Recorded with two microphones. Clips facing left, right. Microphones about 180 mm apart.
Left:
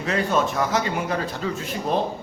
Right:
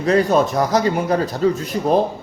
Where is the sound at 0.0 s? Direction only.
40° right (ahead or behind).